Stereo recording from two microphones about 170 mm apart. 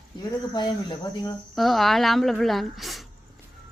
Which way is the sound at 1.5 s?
Centre (ahead or behind).